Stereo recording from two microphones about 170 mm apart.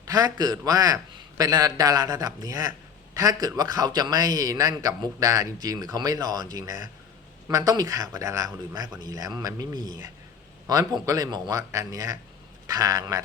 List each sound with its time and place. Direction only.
0.0 s a man's voice: 20° right (ahead or behind)